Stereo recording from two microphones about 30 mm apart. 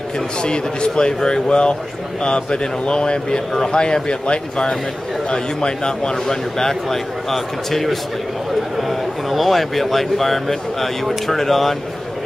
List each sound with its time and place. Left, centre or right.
0.4 s a man's voice: left; by 11.7 s centre